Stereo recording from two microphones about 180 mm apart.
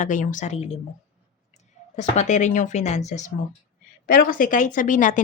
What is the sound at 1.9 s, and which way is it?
Speech, 40° left (ahead or behind).